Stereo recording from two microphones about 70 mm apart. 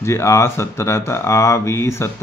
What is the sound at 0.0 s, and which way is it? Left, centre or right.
Speech, left.